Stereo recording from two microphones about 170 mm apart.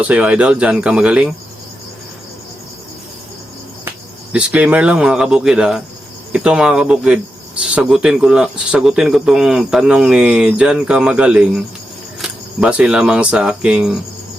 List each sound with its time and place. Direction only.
0.0 s speech: 10° right (ahead or behind)
4.3 s speech: 5° right (ahead or behind)